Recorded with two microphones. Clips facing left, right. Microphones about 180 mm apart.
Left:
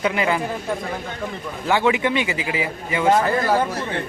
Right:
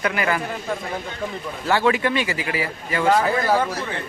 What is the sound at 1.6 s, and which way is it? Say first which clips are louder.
A man's voice: left 1 dB; 15° left (ahead or behind).